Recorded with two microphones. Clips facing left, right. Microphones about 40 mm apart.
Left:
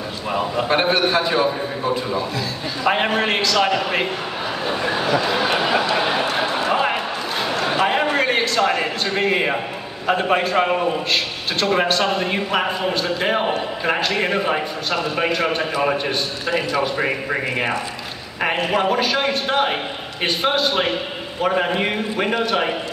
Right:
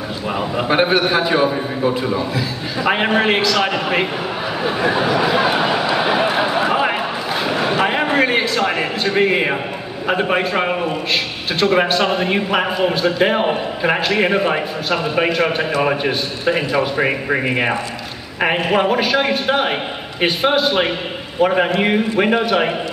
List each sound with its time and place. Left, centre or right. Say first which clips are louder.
0.3 s a man's voice: right 1 dB; centre
4.6 s a sound: right 4 dB; centre
10.0 s a man's voice: right 1 dB; centre